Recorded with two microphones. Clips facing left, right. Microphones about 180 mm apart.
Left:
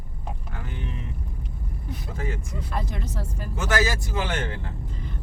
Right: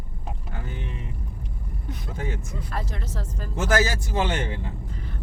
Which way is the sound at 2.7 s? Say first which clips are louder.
Left 2 dB; 10° left (ahead or behind).